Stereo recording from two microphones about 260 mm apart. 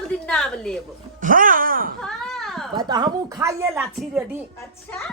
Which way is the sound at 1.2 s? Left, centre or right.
Right.